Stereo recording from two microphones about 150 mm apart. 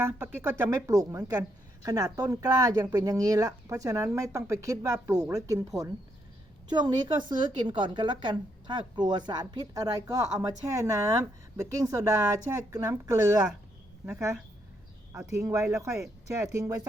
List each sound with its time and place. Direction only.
0.0 s a woman's voice: 15° right (ahead or behind)
15.1 s a woman's voice: 20° right (ahead or behind)